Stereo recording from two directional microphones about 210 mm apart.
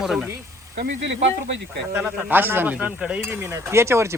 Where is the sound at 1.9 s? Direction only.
10° right (ahead or behind).